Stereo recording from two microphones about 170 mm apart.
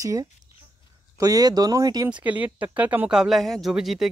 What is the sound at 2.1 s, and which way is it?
Speech, 10° right (ahead or behind).